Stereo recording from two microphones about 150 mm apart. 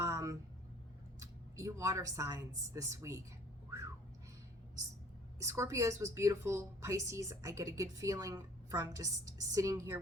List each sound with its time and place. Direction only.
0.0 s a sound: 20° right (ahead or behind)
1.2 s a woman's voice: 20° right (ahead or behind)
5.4 s a woman's voice: 20° right (ahead or behind)